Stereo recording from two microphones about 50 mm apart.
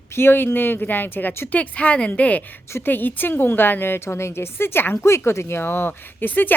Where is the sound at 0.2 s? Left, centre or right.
Left.